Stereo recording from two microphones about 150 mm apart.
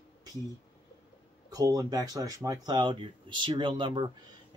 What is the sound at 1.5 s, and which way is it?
Speech, 25° right (ahead or behind).